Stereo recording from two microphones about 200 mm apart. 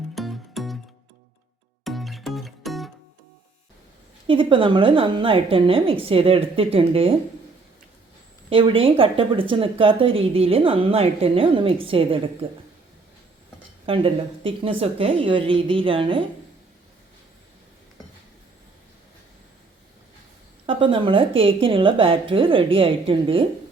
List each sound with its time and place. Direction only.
0.1 s music: centre (ahead or behind)
1.8 s music: centre (ahead or behind)
4.3 s speech: 25° right (ahead or behind)
8.4 s speech: 25° right (ahead or behind)
13.8 s speech: 25° right (ahead or behind)
20.7 s speech: 25° right (ahead or behind)